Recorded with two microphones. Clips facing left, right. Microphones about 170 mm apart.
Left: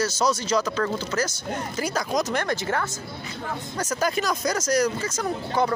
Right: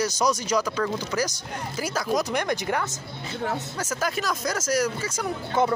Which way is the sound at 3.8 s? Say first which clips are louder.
Left 7 dB; 5° right (ahead or behind).